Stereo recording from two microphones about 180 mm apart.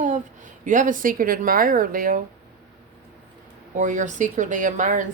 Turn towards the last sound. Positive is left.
turn(degrees=-45)  # may be behind; listen again after turning